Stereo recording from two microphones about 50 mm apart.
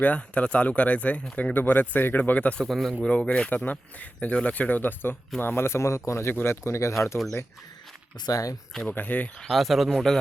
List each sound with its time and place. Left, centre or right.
0.0 s speech: left
1.5 s speech: left
2.6 s a man's voice: centre
3.0 s speech: left
3.5 s speech: left
5.4 s speech: left
8.9 s speech: left
9.4 s a man's voice: centre